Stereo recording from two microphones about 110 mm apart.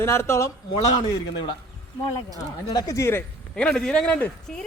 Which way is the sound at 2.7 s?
35° left (ahead or behind).